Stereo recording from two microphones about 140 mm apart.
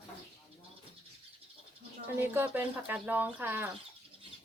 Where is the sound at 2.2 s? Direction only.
15° right (ahead or behind).